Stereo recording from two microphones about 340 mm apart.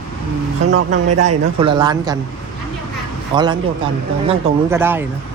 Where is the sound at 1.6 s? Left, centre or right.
Centre.